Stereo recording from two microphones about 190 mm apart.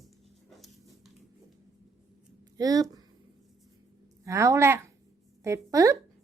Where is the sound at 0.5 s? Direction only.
Centre (ahead or behind).